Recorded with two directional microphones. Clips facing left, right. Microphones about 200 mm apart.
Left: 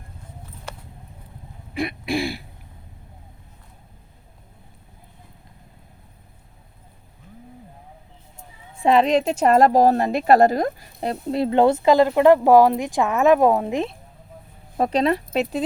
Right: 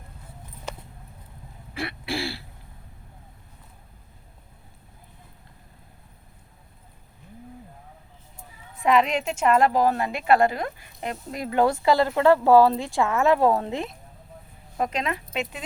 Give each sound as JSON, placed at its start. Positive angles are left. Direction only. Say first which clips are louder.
{"t": 1.7, "sound": "throat clearing", "louder": "left 6 dB", "side_deg": 15}
{"t": 8.4, "sound": "speech", "louder": "left 5 dB", "side_deg": 30}
{"t": 14.8, "sound": "speech", "louder": "left 8 dB", "side_deg": 35}